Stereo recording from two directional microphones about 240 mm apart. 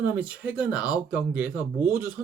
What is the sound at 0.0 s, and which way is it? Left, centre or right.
Speech, centre.